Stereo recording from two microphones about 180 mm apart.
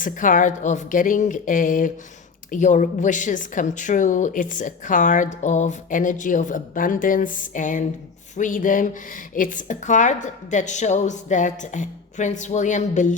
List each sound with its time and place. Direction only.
0.0 s a woman's voice: 45° left (ahead or behind)